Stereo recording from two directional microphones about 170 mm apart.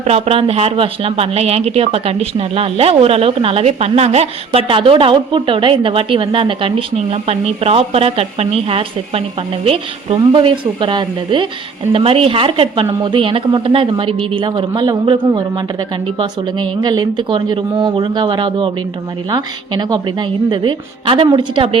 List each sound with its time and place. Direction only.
0.0 s speech: 35° right (ahead or behind)